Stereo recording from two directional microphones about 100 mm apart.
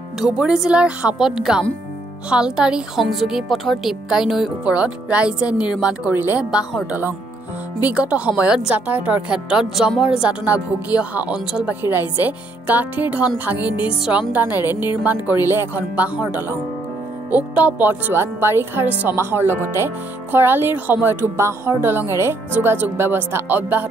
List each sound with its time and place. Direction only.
0.2 s speech: 5° right (ahead or behind)